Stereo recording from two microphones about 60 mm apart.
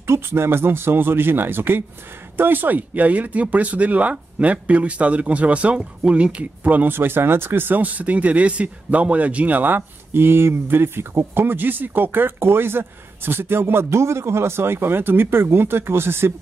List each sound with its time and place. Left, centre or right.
0.0 s speech: right